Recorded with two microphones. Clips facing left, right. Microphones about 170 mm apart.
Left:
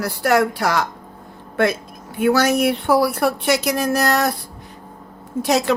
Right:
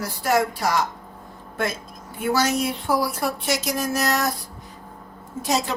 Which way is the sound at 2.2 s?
65° left (ahead or behind).